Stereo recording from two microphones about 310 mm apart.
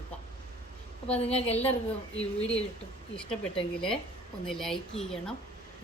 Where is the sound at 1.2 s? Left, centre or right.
Centre.